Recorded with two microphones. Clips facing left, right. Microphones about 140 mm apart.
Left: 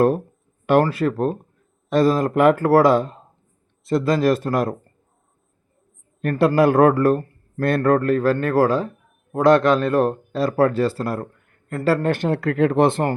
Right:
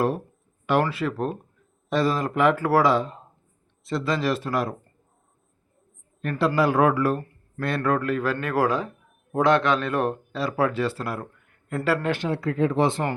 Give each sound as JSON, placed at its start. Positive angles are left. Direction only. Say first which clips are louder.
{"t": 0.7, "sound": "speech", "louder": "left 6 dB", "side_deg": 45}
{"t": 6.2, "sound": "speech", "louder": "left 6 dB", "side_deg": 45}